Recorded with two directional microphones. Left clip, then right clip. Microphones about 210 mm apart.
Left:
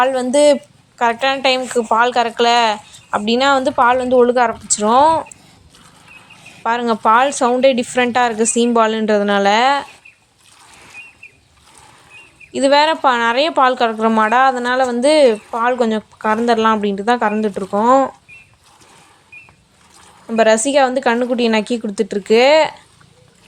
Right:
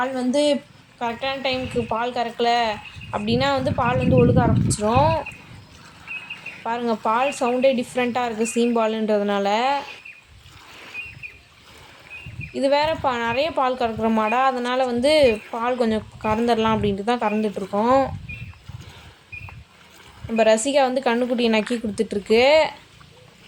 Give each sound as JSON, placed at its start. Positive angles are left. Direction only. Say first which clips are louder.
{"t": 0.0, "sound": "a woman's voice", "louder": "left 9 dB", "side_deg": 50}
{"t": 6.7, "sound": "a woman's voice", "louder": "left 8 dB", "side_deg": 25}
{"t": 12.5, "sound": "a woman's voice", "louder": "left 7 dB", "side_deg": 20}
{"t": 20.3, "sound": "a woman's voice", "louder": "left 5 dB", "side_deg": 20}